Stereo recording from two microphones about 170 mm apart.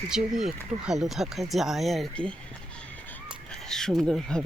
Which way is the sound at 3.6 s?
5° left (ahead or behind).